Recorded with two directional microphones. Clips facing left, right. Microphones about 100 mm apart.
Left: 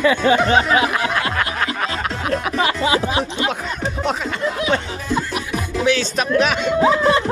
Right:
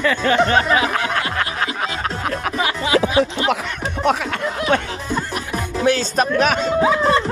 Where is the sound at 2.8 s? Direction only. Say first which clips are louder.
Right 5 dB; 30° left (ahead or behind).